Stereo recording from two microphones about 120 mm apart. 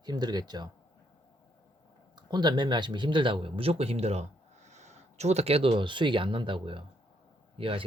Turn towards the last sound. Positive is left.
turn(degrees=-50)  # may be behind; listen again after turning